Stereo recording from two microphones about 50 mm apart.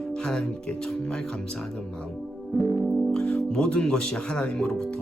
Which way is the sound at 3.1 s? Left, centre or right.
Centre.